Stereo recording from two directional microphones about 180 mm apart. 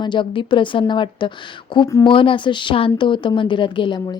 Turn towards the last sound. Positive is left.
turn(degrees=25)  # may be behind; listen again after turning